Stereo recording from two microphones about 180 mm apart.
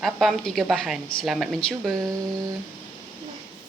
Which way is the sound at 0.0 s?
Centre (ahead or behind).